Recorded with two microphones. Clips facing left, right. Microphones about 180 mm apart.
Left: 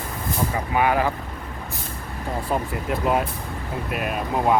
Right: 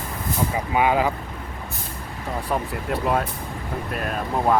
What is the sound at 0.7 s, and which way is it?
Speech, 20° right (ahead or behind).